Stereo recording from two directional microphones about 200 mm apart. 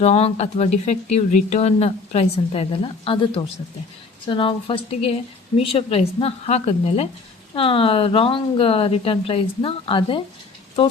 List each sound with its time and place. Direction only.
0.0 s a woman's voice: 30° left (ahead or behind)